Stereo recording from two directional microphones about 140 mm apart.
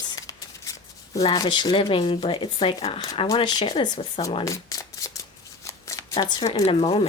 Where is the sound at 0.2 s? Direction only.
25° left (ahead or behind).